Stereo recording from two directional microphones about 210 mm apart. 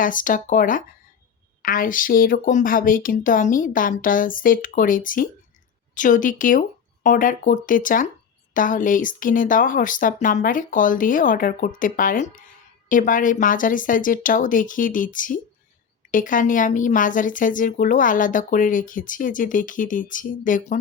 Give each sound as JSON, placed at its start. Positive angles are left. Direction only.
{"t": 0.0, "sound": "speech", "side_deg": 40}